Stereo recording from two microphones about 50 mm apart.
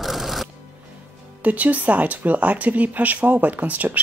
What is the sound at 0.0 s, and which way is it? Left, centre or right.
Music, centre.